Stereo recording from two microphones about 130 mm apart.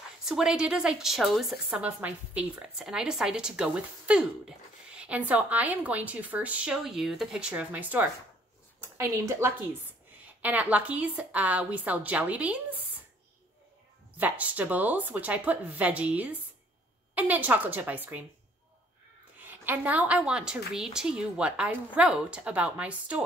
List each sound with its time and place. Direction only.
0.2 s a woman's voice: 5° right (ahead or behind)
14.1 s a woman's voice: 10° right (ahead or behind)
19.4 s a woman's voice: 15° right (ahead or behind)